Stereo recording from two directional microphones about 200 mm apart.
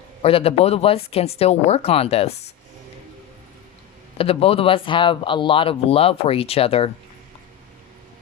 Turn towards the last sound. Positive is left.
turn(degrees=30)  # may be behind; listen again after turning